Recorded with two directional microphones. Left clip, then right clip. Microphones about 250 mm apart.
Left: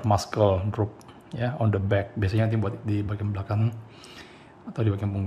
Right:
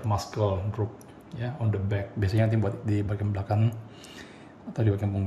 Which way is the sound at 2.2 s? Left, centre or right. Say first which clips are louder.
Even; centre.